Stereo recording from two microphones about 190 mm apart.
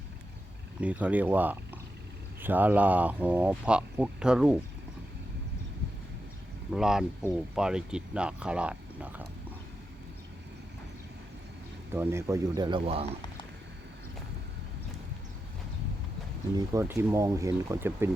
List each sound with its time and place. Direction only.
0.8 s speech: 5° right (ahead or behind)
6.7 s speech: 5° right (ahead or behind)
11.9 s speech: 15° right (ahead or behind); by 13.1 s 30° right (ahead or behind)
16.7 s speech: 15° right (ahead or behind)